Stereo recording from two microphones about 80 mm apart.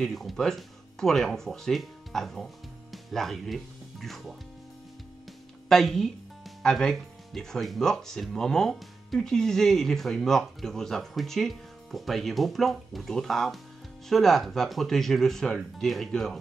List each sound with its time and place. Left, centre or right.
0.0 s speech: centre
5.7 s speech: centre